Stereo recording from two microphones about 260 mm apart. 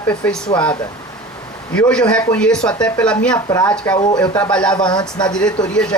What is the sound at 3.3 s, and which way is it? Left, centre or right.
Speech, centre.